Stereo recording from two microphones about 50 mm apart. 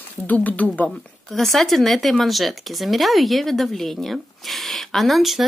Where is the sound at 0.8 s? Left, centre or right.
Centre.